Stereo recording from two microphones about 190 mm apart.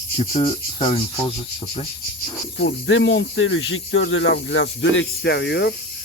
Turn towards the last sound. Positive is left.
turn(degrees=65)  # may be behind; listen again after turning